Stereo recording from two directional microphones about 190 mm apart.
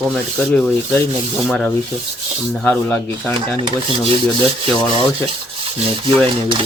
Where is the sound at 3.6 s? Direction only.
25° right (ahead or behind).